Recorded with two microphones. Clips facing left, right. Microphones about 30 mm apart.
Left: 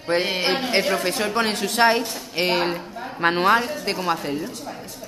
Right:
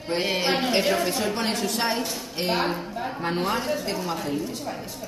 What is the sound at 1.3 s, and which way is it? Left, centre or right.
A woman's voice, left.